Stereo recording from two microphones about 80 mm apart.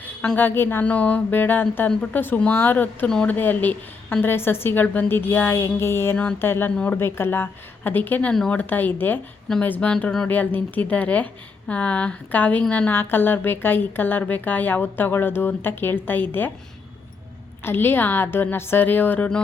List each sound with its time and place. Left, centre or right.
0.3 s a woman's voice: left
6.7 s a woman's voice: centre
6.9 s a woman's voice: left
8.3 s a woman's voice: centre
8.5 s a woman's voice: left
9.9 s a woman's voice: centre
10.2 s a woman's voice: left
12.9 s a woman's voice: left
17.6 s a woman's voice: left